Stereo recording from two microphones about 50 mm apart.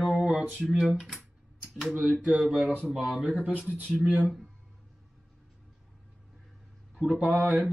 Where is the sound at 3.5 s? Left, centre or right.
Right.